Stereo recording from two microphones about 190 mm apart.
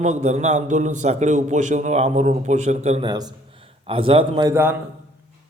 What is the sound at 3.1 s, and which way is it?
A man's voice, 20° right (ahead or behind).